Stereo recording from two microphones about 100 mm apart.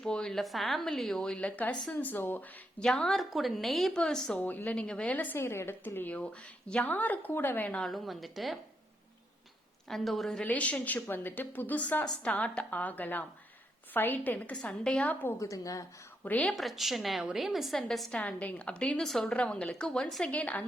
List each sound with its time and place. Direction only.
0.0 s a woman's voice: 5° left (ahead or behind)
2.8 s a woman's voice: 5° left (ahead or behind)
4.4 s a woman's voice: 15° left (ahead or behind)
7.8 s a woman's voice: centre (ahead or behind)
9.9 s a woman's voice: centre (ahead or behind)
10.4 s a woman's voice: 15° left (ahead or behind)
15.4 s a woman's voice: 35° left (ahead or behind)
16.2 s speech: 15° left (ahead or behind)
16.5 s a woman's voice: centre (ahead or behind)
18.2 s a woman's voice: 15° left (ahead or behind)